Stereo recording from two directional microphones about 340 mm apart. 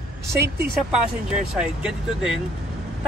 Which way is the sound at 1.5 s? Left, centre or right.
Centre.